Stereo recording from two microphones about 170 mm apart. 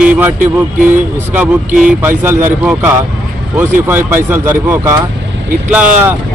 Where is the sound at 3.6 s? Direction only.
10° right (ahead or behind).